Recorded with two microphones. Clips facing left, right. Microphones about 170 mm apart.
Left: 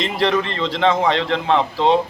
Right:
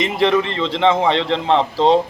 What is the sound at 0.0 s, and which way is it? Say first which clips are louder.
A man's voice: right 3 dB; 20° right (ahead or behind).